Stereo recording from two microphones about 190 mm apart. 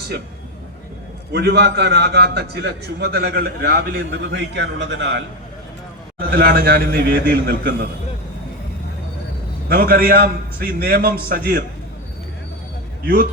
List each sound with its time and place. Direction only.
1.3 s a man's voice: 65° right (ahead or behind)
6.1 s a man's voice: 55° right (ahead or behind)
9.6 s a man's voice: 55° right (ahead or behind)